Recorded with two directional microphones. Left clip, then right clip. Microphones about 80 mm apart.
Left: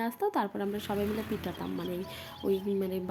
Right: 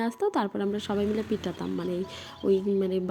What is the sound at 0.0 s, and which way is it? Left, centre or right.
A woman's voice, right.